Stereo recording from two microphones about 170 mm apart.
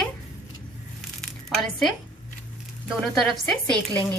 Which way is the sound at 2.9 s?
5° left (ahead or behind).